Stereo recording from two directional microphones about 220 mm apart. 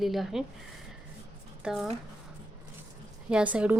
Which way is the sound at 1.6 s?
Centre (ahead or behind).